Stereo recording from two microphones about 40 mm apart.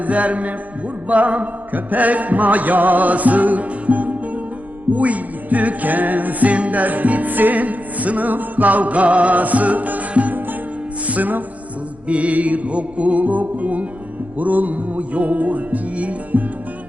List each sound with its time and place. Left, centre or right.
0.0 s music: right
12.0 s music: right